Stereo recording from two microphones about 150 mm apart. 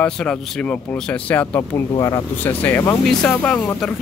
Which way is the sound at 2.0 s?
20° left (ahead or behind).